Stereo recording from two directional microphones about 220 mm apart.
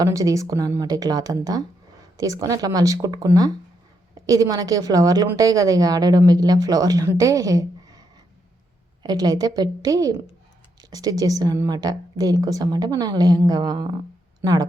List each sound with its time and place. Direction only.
0.0 s a woman's voice: 15° right (ahead or behind)
9.0 s a woman's voice: 20° right (ahead or behind)